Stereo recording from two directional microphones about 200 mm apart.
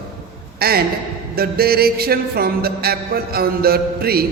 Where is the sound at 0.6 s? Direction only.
50° right (ahead or behind).